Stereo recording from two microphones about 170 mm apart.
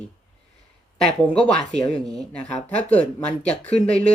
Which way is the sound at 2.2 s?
5° left (ahead or behind).